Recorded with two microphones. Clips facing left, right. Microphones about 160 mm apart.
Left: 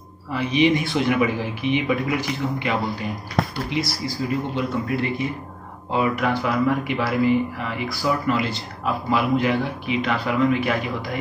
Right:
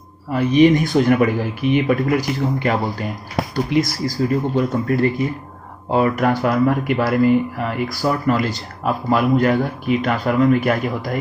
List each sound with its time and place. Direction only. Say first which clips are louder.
0.3 s speech: right 6 dB; 45° right (ahead or behind)